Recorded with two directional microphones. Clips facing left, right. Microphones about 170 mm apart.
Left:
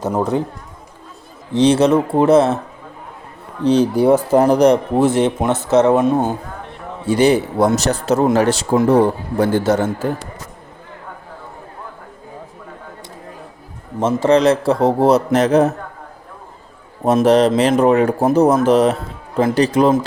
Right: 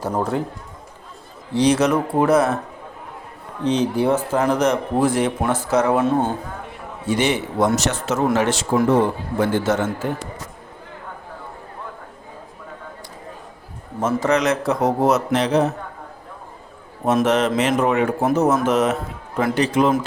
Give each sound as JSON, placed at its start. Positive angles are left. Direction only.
{"t": 1.5, "sound": "speech", "side_deg": 25}
{"t": 3.6, "sound": "a man's voice", "side_deg": 40}
{"t": 7.1, "sound": "a man's voice", "side_deg": 35}
{"t": 14.0, "sound": "a man's voice", "side_deg": 30}
{"t": 15.4, "sound": "a man's voice", "side_deg": 45}
{"t": 17.1, "sound": "a man's voice", "side_deg": 35}